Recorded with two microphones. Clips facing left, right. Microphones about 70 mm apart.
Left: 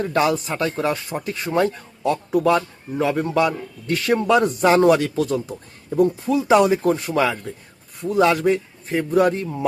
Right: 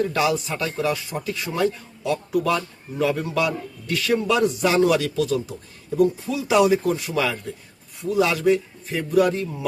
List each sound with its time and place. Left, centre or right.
0.0 s speech: left